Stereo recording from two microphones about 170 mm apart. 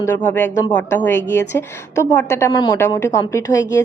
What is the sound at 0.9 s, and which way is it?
A woman's voice, 15° left (ahead or behind).